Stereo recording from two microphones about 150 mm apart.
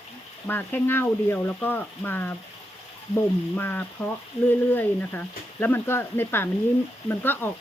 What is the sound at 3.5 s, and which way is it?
Speech, 10° left (ahead or behind).